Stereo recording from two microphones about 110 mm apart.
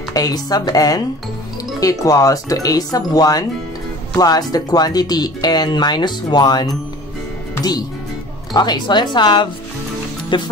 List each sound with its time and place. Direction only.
0.1 s speech: 35° left (ahead or behind)
8.5 s a woman's voice: 40° left (ahead or behind)